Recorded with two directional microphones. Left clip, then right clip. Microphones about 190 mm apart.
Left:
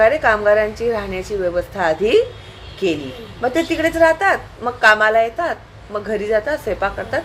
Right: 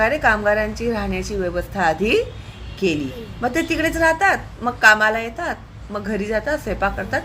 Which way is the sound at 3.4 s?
20° right (ahead or behind).